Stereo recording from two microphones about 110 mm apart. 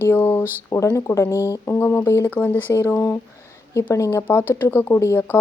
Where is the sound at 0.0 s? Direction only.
20° left (ahead or behind).